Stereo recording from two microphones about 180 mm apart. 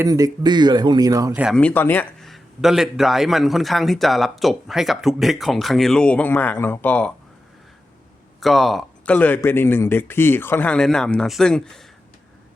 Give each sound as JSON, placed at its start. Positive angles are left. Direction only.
{"t": 0.0, "sound": "speech", "side_deg": -20}
{"t": 1.5, "sound": "a man's voice", "side_deg": 10}
{"t": 8.4, "sound": "speech", "side_deg": 0}